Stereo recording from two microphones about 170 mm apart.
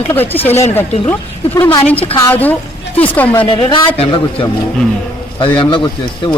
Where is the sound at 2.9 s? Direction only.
10° left (ahead or behind).